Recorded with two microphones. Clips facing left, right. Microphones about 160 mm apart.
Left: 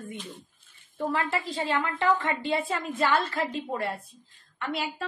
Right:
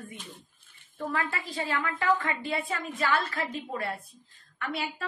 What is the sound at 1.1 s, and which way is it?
A woman's voice, 25° left (ahead or behind).